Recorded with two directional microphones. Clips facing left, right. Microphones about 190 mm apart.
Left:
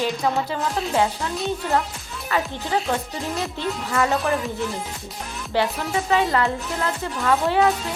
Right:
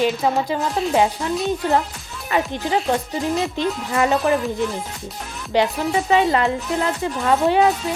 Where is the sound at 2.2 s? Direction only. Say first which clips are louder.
Right 4 dB; 20° right (ahead or behind).